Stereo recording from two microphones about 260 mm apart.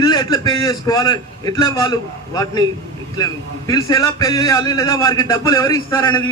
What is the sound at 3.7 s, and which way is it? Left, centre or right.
A man's voice, centre.